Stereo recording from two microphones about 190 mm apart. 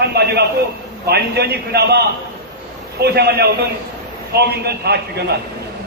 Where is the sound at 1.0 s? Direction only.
55° right (ahead or behind).